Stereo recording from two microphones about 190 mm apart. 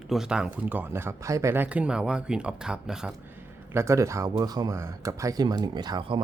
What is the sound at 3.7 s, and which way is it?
Speech, 15° right (ahead or behind).